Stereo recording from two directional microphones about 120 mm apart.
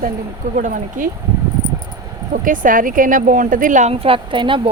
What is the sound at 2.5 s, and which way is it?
Speech, 90° right.